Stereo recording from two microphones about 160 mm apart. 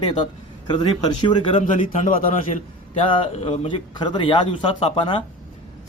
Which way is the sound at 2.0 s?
55° left (ahead or behind).